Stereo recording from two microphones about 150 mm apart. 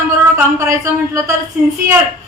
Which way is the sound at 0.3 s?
20° right (ahead or behind).